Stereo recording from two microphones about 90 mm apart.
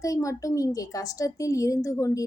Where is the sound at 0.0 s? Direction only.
35° left (ahead or behind).